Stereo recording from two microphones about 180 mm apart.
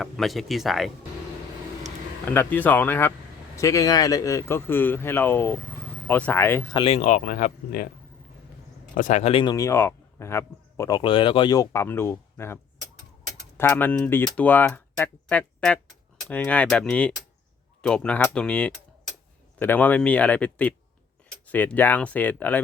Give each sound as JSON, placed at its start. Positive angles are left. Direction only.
{"t": 0.0, "sound": "speech", "side_deg": 0}
{"t": 2.3, "sound": "speech", "side_deg": 10}
{"t": 6.7, "sound": "speech", "side_deg": 30}
{"t": 7.0, "sound": "speech", "side_deg": 45}
{"t": 9.0, "sound": "speech", "side_deg": 45}
{"t": 13.6, "sound": "speech", "side_deg": 10}